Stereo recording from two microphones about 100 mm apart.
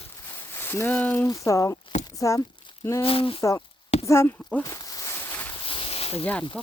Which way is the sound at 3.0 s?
65° left (ahead or behind).